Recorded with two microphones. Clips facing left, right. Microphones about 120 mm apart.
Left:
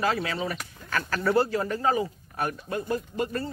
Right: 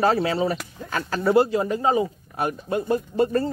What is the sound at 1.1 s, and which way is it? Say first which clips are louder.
Speech: right 5 dB; 20° right (ahead or behind).